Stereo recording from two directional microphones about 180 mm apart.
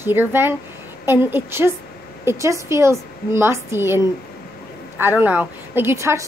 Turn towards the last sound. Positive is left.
turn(degrees=-15)  # may be behind; listen again after turning